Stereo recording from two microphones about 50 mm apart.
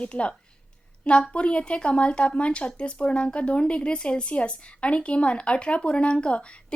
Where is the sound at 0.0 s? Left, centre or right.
Left.